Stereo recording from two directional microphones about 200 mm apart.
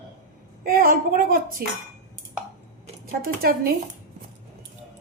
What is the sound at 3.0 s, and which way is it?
Speech, 45° right (ahead or behind).